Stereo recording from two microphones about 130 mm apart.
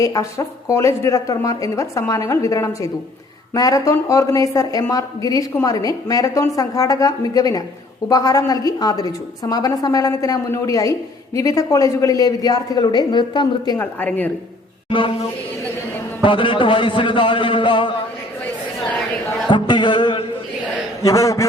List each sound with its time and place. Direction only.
0.0 s speech: 25° left (ahead or behind)
13.7 s a woman's voice: 15° left (ahead or behind)
14.8 s speech: 40° left (ahead or behind)
16.2 s a man's voice: 40° left (ahead or behind)
19.5 s music: 35° left (ahead or behind)
21.0 s speech: 25° left (ahead or behind)